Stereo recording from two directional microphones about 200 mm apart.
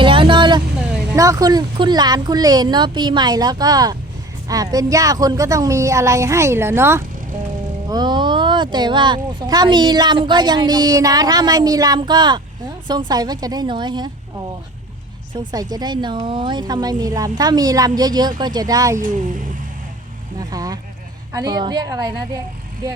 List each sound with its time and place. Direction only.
0.0 s vehicle: 25° right (ahead or behind)
1.1 s a woman's voice: 15° right (ahead or behind)
15.5 s speech: 20° right (ahead or behind)
20.4 s a sound: 20° right (ahead or behind)
21.3 s speech: 20° right (ahead or behind)